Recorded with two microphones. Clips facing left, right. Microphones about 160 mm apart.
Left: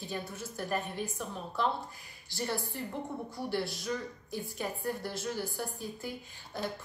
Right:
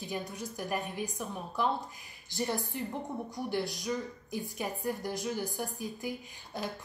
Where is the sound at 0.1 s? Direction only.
15° right (ahead or behind).